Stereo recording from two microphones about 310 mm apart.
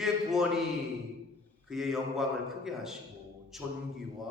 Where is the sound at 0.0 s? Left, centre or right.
Centre.